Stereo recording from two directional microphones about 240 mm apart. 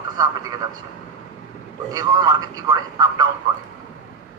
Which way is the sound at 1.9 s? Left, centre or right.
Centre.